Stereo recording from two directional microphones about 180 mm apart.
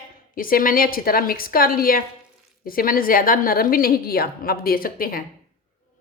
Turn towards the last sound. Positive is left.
turn(degrees=55)  # may be behind; listen again after turning